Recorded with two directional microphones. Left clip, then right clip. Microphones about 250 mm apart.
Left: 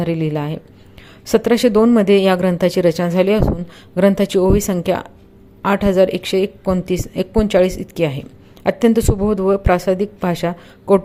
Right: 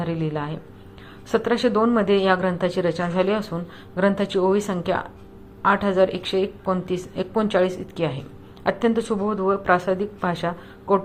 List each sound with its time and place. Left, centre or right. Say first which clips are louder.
0.0 s speech: left 6 dB; left